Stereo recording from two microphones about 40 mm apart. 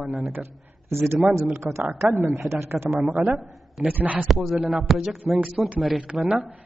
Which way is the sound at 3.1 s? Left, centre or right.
Right.